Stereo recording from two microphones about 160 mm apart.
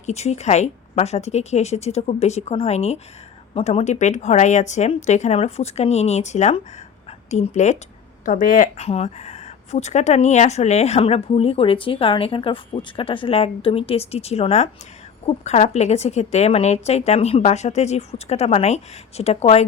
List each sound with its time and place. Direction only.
0.0 s a woman's voice: 45° left (ahead or behind)